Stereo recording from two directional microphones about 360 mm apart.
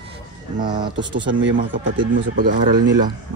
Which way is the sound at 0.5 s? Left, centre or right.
Centre.